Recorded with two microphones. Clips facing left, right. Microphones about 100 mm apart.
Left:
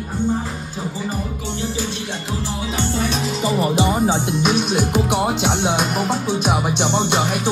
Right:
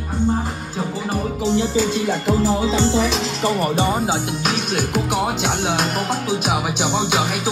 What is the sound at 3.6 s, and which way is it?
Music, 10° left (ahead or behind).